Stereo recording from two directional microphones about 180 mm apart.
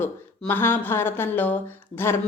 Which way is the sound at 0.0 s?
10° left (ahead or behind).